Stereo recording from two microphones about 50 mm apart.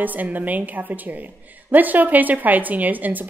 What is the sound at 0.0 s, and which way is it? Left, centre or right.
A woman's voice, right.